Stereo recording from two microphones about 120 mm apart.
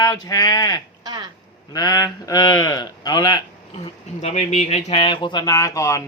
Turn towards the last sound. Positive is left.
turn(degrees=25)  # may be behind; listen again after turning